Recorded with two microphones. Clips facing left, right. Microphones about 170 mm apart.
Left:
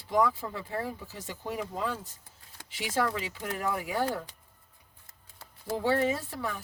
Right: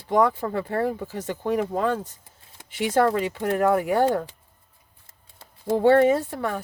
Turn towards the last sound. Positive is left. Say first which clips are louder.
# right 9 dB
turn(degrees=-60)  # may be behind; listen again after turning